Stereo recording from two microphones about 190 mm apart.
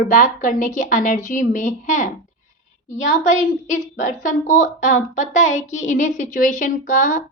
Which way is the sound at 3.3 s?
40° left (ahead or behind).